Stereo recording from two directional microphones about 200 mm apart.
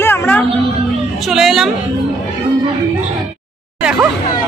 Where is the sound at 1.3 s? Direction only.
Centre (ahead or behind).